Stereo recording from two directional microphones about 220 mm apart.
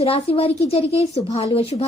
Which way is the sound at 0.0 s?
25° left (ahead or behind).